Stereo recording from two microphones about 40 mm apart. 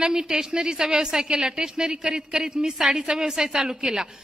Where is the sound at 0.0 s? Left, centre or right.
Centre.